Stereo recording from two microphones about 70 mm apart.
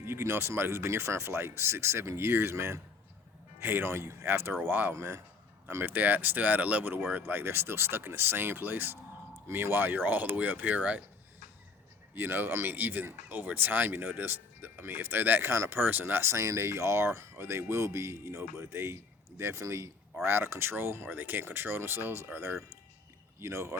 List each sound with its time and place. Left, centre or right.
0.0 s speech: right
4.9 s speech: right
5.6 s speech: right
12.1 s speech: right
15.8 s speech: right
16.2 s speech: right
23.4 s speech: right